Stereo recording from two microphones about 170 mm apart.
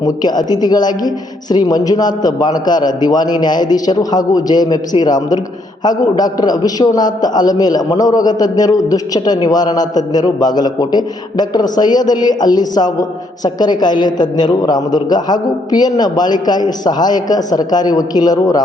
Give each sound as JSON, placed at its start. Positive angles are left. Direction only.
{"t": 0.0, "sound": "a man's voice", "side_deg": 25}
{"t": 5.8, "sound": "a man's voice", "side_deg": 25}